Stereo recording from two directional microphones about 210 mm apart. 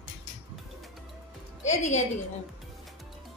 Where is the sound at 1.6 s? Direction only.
35° left (ahead or behind).